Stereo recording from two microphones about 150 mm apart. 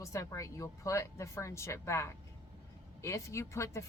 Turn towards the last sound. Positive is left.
turn(degrees=20)  # may be behind; listen again after turning